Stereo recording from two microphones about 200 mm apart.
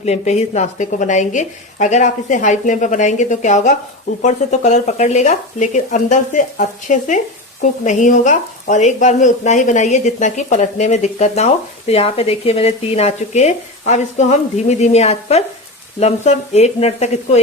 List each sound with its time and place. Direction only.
0.0 s speech: 35° left (ahead or behind)